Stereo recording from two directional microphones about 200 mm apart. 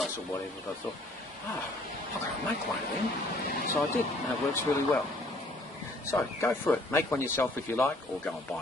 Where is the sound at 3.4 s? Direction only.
45° left (ahead or behind).